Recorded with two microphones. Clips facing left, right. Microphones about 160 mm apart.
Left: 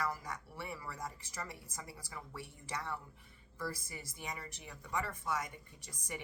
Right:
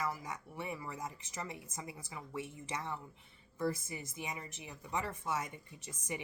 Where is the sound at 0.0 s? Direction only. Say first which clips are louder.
Even; 15° right (ahead or behind).